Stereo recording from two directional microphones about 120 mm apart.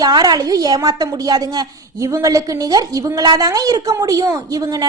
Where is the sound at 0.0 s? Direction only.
35° right (ahead or behind).